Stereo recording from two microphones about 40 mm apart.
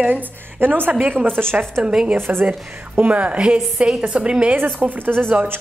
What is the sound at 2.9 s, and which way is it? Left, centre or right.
A woman's voice, right.